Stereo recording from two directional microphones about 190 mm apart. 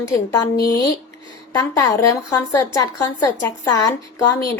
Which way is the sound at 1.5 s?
15° left (ahead or behind).